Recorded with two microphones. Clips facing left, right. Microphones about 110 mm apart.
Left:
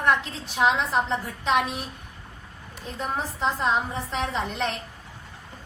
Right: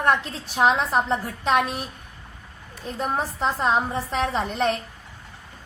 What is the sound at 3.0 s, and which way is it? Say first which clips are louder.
A woman's voice: right 3 dB; 40° right (ahead or behind).